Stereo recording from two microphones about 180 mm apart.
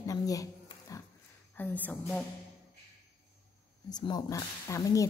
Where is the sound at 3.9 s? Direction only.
25° left (ahead or behind).